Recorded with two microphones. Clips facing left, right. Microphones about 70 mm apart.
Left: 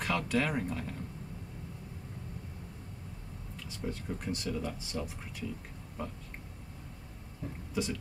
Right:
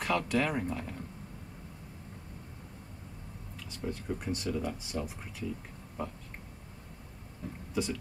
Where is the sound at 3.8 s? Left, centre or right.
Centre.